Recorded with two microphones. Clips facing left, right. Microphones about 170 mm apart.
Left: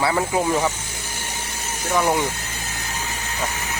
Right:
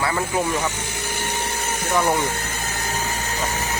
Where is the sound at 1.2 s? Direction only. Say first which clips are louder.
Right 7 dB; 60° right (ahead or behind).